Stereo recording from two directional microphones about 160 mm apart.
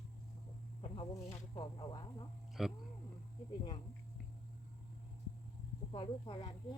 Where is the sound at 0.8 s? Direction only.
35° left (ahead or behind).